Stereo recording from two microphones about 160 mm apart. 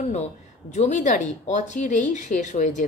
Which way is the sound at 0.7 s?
45° left (ahead or behind).